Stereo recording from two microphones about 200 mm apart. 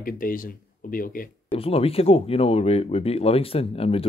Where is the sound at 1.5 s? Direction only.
30° left (ahead or behind).